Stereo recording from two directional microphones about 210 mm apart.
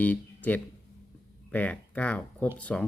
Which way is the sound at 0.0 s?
10° left (ahead or behind).